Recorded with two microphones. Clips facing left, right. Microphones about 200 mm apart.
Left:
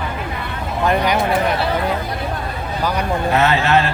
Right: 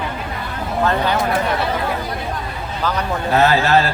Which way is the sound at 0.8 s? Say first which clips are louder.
Left 2 dB; 15° left (ahead or behind).